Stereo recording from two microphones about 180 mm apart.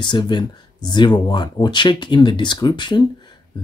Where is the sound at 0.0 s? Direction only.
25° left (ahead or behind).